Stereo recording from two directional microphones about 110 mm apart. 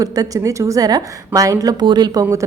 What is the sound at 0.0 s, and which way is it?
A woman's voice, 35° right (ahead or behind).